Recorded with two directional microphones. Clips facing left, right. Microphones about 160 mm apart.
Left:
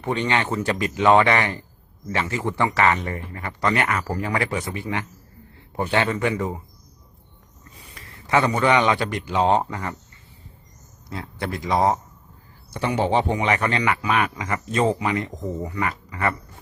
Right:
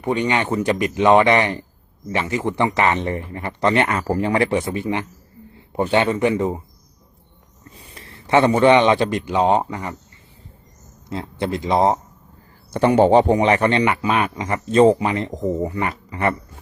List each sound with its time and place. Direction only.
0.0 s a man's voice: 15° right (ahead or behind)
7.8 s a man's voice: 30° right (ahead or behind); by 9.9 s 15° right (ahead or behind)
11.1 s a man's voice: 25° right (ahead or behind)
12.7 s a man's voice: 50° right (ahead or behind); by 16.3 s 25° right (ahead or behind)